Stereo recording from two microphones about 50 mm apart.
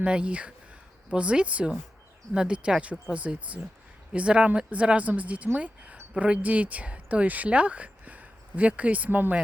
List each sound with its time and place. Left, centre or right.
0.0 s speech: right
9.0 s speech: right